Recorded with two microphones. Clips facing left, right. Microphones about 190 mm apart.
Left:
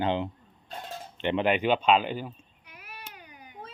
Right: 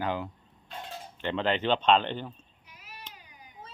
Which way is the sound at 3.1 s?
60° left (ahead or behind).